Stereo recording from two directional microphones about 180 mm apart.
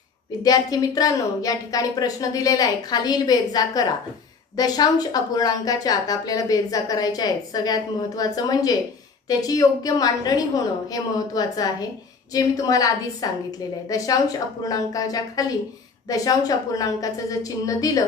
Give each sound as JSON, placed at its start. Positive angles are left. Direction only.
{"t": 0.4, "sound": "a woman's voice", "side_deg": 20}